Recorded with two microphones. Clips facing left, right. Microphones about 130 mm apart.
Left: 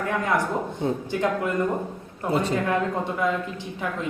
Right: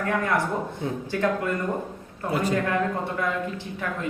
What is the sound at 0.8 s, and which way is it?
Speech, 25° left (ahead or behind).